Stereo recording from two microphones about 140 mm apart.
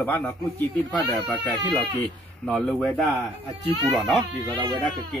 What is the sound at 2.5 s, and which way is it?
Speech, 5° left (ahead or behind).